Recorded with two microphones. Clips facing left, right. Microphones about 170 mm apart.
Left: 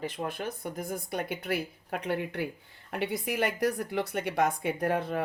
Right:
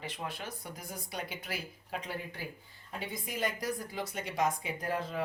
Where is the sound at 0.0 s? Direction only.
50° left (ahead or behind).